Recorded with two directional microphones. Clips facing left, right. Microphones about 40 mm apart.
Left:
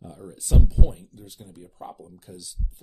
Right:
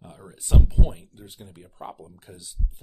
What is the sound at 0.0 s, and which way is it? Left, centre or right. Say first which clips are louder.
Speech: left 3 dB; right.